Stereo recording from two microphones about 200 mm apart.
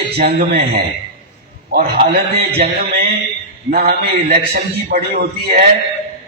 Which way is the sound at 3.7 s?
50° right (ahead or behind).